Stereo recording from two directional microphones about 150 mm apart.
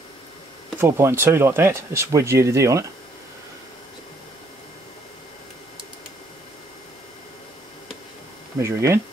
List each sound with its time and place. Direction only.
0.7 s speech: 15° right (ahead or behind)
8.5 s speech: 20° right (ahead or behind)